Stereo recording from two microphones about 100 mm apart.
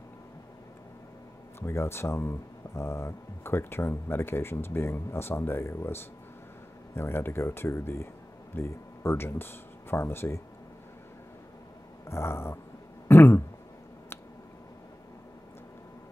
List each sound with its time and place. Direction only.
1.6 s speech: 25° left (ahead or behind)
12.1 s speech: 25° left (ahead or behind)
13.1 s throat clearing: 25° left (ahead or behind)